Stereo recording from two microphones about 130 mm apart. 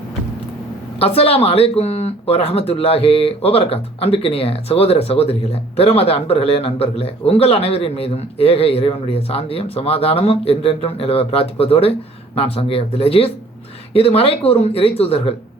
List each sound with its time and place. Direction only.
0.9 s speech: 50° left (ahead or behind)